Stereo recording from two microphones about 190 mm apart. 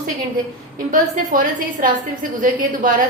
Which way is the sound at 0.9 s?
45° right (ahead or behind).